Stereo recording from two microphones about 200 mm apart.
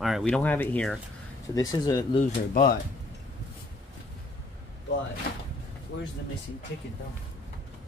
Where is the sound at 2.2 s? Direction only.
40° left (ahead or behind).